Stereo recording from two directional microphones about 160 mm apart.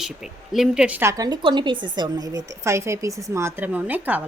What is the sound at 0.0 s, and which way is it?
A woman's voice, centre (ahead or behind).